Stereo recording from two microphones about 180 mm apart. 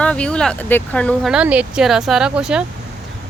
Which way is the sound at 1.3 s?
5° right (ahead or behind).